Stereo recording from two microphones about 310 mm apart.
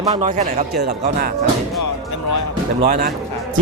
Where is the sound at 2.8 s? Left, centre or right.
Right.